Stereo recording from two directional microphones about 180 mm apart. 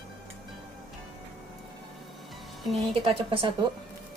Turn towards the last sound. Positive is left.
turn(degrees=-30)  # may be behind; listen again after turning